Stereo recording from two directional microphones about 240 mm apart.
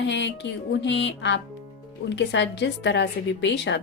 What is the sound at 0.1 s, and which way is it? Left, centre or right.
A woman's voice, left.